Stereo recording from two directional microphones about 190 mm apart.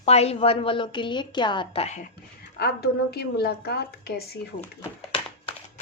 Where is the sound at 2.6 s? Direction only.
55° left (ahead or behind).